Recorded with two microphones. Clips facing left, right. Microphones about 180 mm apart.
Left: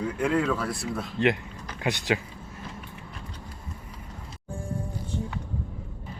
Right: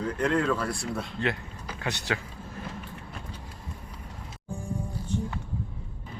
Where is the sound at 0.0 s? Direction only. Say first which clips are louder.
Left 1 dB; 5° left (ahead or behind).